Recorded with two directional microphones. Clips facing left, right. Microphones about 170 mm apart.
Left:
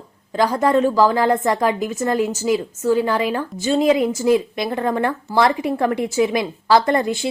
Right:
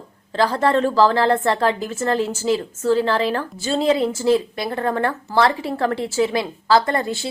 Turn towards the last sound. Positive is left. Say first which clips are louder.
# left 4 dB
turn(degrees=20)  # may be behind; listen again after turning